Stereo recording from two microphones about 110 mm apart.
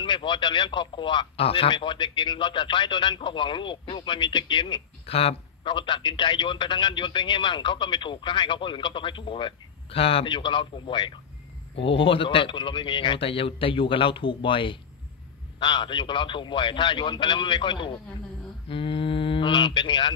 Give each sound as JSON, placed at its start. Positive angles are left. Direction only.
{"t": 0.0, "sound": "speech", "side_deg": 45}
{"t": 11.7, "sound": "speech", "side_deg": 55}